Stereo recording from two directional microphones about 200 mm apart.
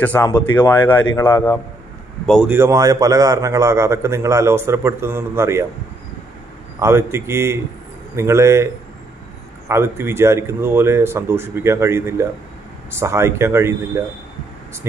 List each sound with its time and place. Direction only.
0.0 s speech: 10° left (ahead or behind)
2.2 s speech: centre (ahead or behind)
2.5 s a man's voice: 15° right (ahead or behind)
6.8 s a man's voice: 15° right (ahead or behind)
9.7 s a man's voice: 15° right (ahead or behind)